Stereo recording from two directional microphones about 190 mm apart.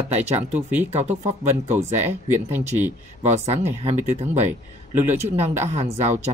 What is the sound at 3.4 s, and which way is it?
Speech, 35° right (ahead or behind).